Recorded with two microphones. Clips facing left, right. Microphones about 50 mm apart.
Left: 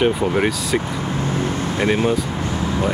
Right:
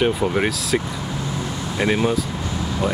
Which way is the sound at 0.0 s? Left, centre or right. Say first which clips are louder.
Left 2 dB; centre.